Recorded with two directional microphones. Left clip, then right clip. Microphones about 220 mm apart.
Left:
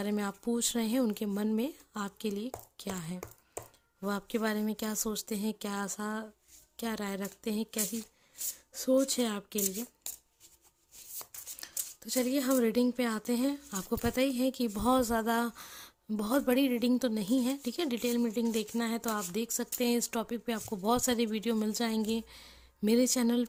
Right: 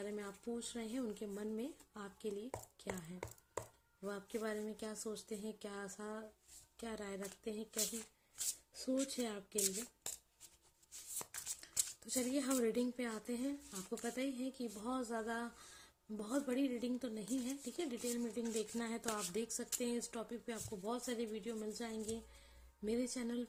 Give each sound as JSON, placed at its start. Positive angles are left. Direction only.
{"t": 0.0, "sound": "speech", "side_deg": 35}
{"t": 11.6, "sound": "speech", "side_deg": 20}